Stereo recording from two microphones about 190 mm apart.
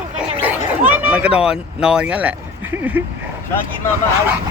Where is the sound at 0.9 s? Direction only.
10° right (ahead or behind).